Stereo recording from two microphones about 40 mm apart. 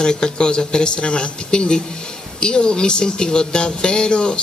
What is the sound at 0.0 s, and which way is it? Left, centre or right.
Speech, left.